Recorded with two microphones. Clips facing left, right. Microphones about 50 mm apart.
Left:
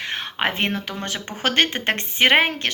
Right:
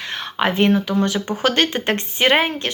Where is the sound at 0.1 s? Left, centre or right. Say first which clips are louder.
Right 4 dB; left.